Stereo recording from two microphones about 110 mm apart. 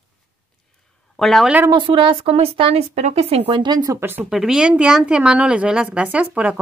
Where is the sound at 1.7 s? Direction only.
50° right (ahead or behind).